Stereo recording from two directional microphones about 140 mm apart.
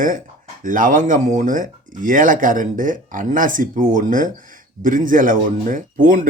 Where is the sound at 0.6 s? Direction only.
70° right (ahead or behind).